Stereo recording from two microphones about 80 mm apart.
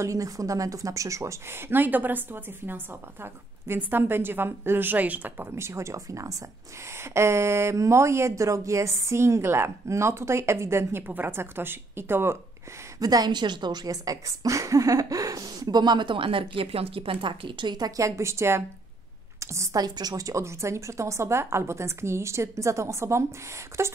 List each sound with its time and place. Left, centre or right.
0.0 s speech: right; by 5.5 s centre
5.6 s speech: right
13.0 s a woman's voice: right
19.8 s speech: right